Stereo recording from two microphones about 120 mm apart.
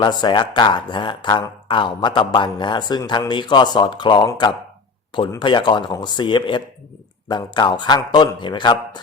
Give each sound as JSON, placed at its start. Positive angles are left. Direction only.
{"t": 0.0, "sound": "speech", "side_deg": 40}
{"t": 5.4, "sound": "speech", "side_deg": 40}